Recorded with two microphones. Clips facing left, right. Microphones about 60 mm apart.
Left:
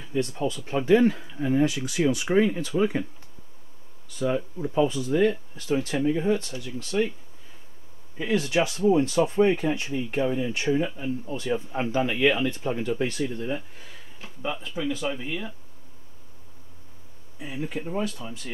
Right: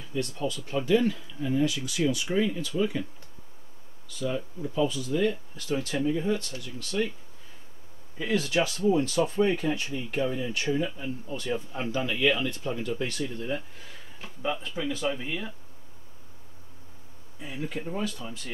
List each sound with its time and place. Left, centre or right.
0.1 s speech: left
4.6 s speech: left
8.2 s speech: left
14.2 s speech: centre
17.4 s speech: centre